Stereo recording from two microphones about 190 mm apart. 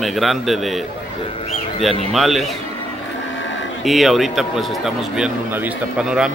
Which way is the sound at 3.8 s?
Centre (ahead or behind).